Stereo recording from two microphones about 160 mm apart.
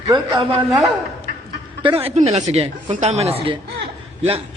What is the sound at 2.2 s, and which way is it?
Speech, 40° right (ahead or behind).